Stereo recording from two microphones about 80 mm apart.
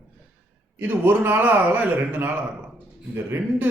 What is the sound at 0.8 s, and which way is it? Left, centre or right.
A man's voice, right.